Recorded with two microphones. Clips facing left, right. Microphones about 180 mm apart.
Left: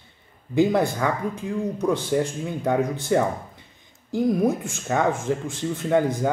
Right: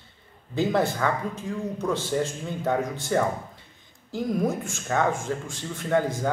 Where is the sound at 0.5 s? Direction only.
15° left (ahead or behind).